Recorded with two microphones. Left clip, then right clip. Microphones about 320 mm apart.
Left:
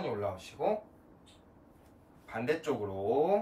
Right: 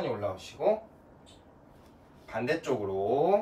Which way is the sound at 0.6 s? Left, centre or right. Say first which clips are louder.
Right 5 dB; centre.